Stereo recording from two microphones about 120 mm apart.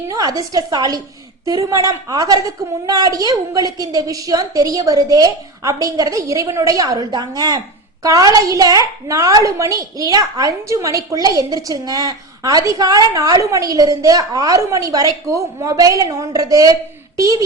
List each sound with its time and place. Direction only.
0.1 s a woman's voice: 30° right (ahead or behind)